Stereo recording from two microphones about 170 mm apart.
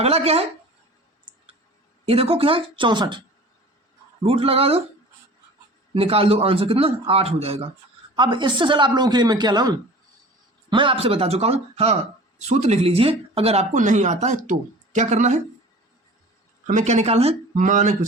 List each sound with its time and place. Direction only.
0.0 s speech: 35° right (ahead or behind)
2.0 s speech: 35° right (ahead or behind)
4.2 s speech: 35° right (ahead or behind)
5.9 s speech: 35° right (ahead or behind)
16.6 s speech: 45° right (ahead or behind)